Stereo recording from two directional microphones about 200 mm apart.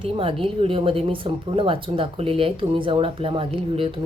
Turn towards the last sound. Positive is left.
turn(degrees=-25)  # may be behind; listen again after turning